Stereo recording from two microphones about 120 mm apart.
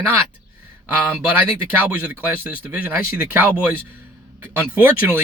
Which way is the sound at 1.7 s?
15° right (ahead or behind).